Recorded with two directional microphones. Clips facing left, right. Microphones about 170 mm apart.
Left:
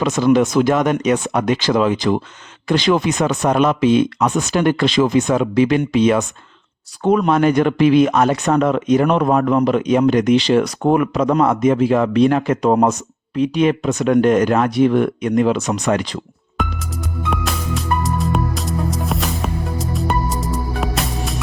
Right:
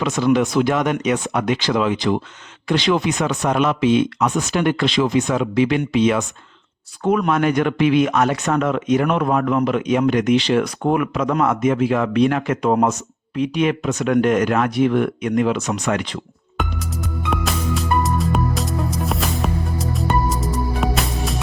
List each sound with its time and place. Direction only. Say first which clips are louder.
0.0 s speech: left 3 dB; 40° left (ahead or behind)
7.0 s speech: left 3 dB; 30° left (ahead or behind)
17.3 s music: right 2 dB; centre (ahead or behind)